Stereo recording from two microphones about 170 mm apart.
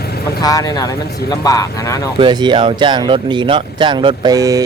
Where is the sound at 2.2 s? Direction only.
25° right (ahead or behind).